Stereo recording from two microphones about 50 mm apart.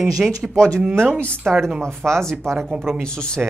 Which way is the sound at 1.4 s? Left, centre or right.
Right.